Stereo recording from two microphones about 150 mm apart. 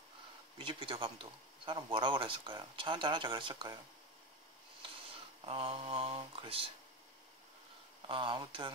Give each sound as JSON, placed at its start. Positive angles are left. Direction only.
{"t": 0.6, "sound": "speech", "side_deg": -35}
{"t": 5.4, "sound": "speech", "side_deg": -40}
{"t": 8.1, "sound": "speech", "side_deg": -35}